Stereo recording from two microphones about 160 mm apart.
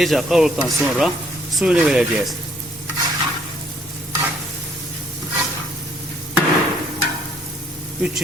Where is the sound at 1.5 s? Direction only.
5° right (ahead or behind).